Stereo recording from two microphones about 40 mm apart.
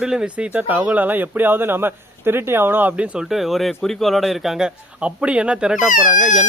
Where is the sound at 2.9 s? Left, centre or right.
Right.